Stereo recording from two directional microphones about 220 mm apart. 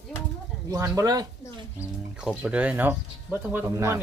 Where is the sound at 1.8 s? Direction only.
5° right (ahead or behind).